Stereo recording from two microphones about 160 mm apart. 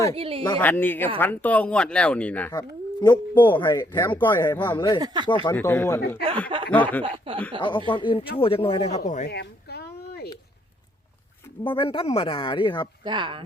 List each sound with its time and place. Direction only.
0.2 s speech: 35° right (ahead or behind)
0.6 s speech: 10° left (ahead or behind)
2.5 s speech: 25° left (ahead or behind)
4.9 s speech: 25° right (ahead or behind)
5.2 s speech: 30° left (ahead or behind)
5.5 s speech: 15° left (ahead or behind)
7.3 s speech: 35° right (ahead or behind)
7.6 s speech: 30° left (ahead or behind); by 9.3 s 45° left (ahead or behind)
9.3 s a sound: 90° left
11.6 s speech: 30° left (ahead or behind)
13.1 s speech: 30° right (ahead or behind)